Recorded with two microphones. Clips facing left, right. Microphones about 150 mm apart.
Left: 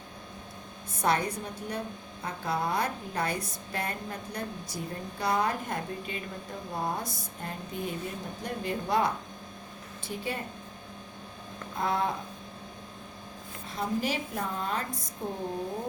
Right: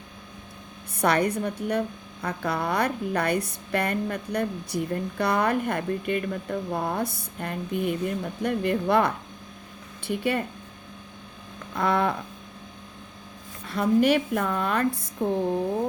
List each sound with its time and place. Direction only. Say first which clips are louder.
0.9 s a woman's voice: right 5 dB; 65° right (ahead or behind)
11.8 s a woman's voice: right 5 dB; 75° right (ahead or behind)
13.7 s a woman's voice: right 10 dB; 65° right (ahead or behind)